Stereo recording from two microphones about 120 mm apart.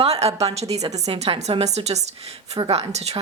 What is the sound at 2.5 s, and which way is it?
Speech, 50° right (ahead or behind).